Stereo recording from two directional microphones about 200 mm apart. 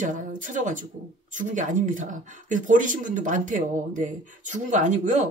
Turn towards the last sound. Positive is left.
turn(degrees=-40)  # may be behind; listen again after turning